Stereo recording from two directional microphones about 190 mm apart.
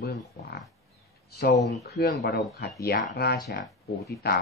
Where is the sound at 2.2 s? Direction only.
55° left (ahead or behind).